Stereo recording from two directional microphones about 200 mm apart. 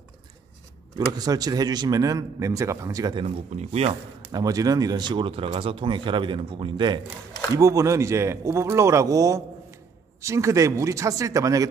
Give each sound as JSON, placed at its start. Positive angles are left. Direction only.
{"t": 0.9, "sound": "speech", "side_deg": -20}
{"t": 3.3, "sound": "speech", "side_deg": -30}
{"t": 4.3, "sound": "a man's voice", "side_deg": -20}